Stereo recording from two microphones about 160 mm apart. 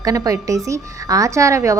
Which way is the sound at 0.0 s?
20° right (ahead or behind).